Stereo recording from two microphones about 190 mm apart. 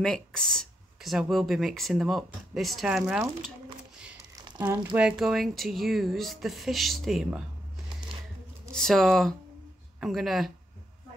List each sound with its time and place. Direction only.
0.0 s speech: 5° left (ahead or behind)
4.9 s speech: 5° right (ahead or behind)
8.7 s speech: centre (ahead or behind)